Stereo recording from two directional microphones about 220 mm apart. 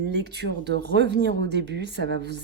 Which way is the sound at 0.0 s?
50° right (ahead or behind).